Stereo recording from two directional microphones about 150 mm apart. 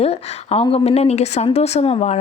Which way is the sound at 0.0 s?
40° left (ahead or behind).